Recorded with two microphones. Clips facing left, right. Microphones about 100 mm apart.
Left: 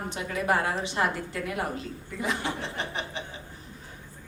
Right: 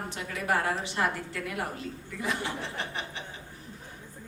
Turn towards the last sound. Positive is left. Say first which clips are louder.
# left 2 dB
turn(degrees=20)  # may be behind; listen again after turning